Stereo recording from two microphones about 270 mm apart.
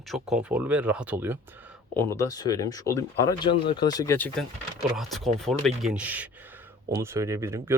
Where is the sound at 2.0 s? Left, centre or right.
Centre.